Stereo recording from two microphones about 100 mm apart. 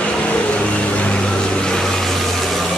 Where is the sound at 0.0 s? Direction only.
10° left (ahead or behind).